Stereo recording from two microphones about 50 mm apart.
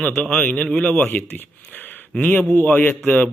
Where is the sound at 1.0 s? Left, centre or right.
Left.